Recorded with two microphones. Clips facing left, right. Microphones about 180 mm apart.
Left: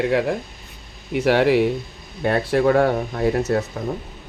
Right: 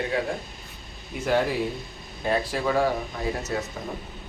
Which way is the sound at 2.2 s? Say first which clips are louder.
Left 7 dB; 60° left (ahead or behind).